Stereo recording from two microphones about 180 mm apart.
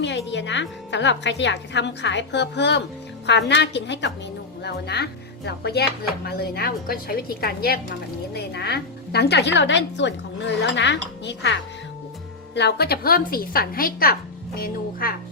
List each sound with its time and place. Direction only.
0.0 s a woman's voice: 75° left (ahead or behind)
4.6 s a woman's voice: 65° left (ahead or behind)
12.5 s a woman's voice: 65° left (ahead or behind)